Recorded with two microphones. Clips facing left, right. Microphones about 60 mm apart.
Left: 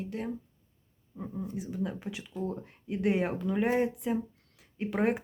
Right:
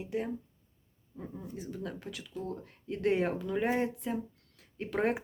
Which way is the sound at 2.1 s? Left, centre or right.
Left.